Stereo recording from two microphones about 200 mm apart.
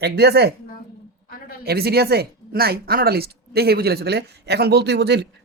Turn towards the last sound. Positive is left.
turn(degrees=-55)  # may be behind; listen again after turning